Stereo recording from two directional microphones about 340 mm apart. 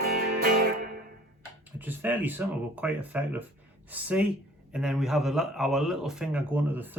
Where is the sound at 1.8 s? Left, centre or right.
Centre.